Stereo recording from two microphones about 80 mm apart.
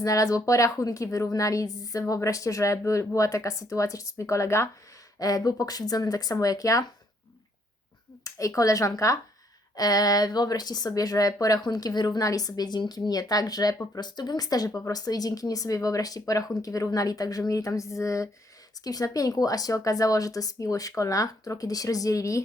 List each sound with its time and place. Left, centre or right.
0.0 s a woman's voice: left
5.2 s a woman's voice: left
8.2 s a woman's voice: left
13.1 s a woman's voice: left
14.7 s speech: left
14.9 s a woman's voice: left